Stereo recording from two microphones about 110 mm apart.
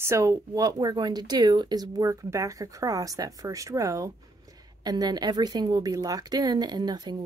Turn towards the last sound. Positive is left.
turn(degrees=-40)  # may be behind; listen again after turning